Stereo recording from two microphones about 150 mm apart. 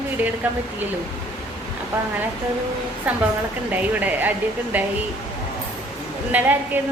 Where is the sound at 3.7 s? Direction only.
10° right (ahead or behind).